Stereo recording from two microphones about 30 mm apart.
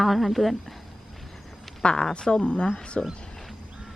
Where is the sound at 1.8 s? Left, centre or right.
Left.